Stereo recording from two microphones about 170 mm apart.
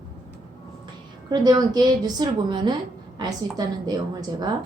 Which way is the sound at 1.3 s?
25° right (ahead or behind).